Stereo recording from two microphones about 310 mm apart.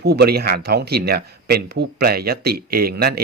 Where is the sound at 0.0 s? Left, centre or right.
Right.